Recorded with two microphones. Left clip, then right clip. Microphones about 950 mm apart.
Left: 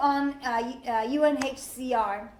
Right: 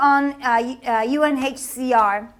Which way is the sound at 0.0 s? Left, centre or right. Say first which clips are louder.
Right 9 dB; right.